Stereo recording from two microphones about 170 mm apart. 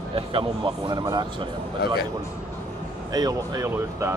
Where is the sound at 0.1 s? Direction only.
30° right (ahead or behind).